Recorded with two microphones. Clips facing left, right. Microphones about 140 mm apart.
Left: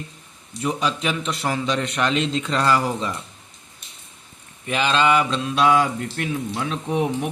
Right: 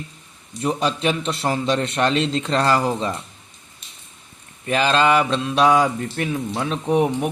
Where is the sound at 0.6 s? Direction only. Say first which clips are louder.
Right 3 dB; 40° right (ahead or behind).